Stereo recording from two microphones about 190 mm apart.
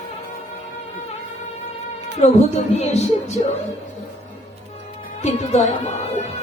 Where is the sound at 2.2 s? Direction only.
35° left (ahead or behind).